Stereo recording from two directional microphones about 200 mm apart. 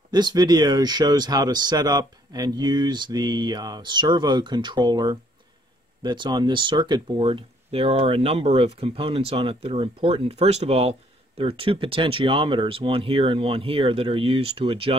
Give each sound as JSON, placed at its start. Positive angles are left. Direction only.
{"t": 0.1, "sound": "speech", "side_deg": -20}